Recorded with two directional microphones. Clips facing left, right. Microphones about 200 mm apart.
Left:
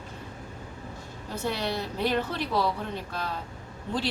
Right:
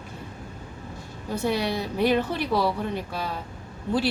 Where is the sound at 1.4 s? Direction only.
10° right (ahead or behind).